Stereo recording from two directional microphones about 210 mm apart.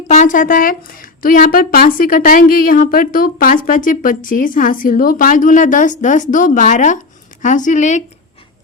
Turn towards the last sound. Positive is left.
turn(degrees=35)  # may be behind; listen again after turning